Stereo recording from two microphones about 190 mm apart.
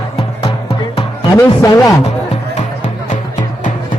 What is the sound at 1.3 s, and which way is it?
Speech, 15° left (ahead or behind).